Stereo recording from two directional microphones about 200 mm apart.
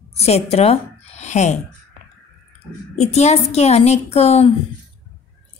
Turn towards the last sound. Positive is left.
turn(degrees=30)  # may be behind; listen again after turning